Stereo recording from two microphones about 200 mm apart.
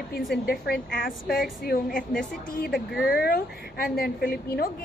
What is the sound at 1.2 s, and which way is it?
Speech, centre (ahead or behind).